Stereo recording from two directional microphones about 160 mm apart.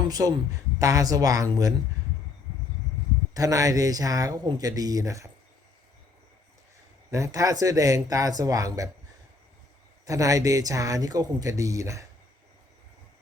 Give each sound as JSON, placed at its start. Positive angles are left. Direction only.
{"t": 0.1, "sound": "speech", "side_deg": -25}
{"t": 3.3, "sound": "speech", "side_deg": -20}
{"t": 7.1, "sound": "speech", "side_deg": -20}
{"t": 10.1, "sound": "speech", "side_deg": -20}